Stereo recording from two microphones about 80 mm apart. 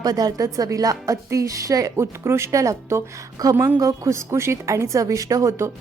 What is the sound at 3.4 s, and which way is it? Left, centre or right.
A woman's voice, right.